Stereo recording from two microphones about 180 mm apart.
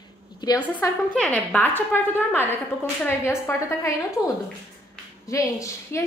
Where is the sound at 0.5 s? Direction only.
10° left (ahead or behind).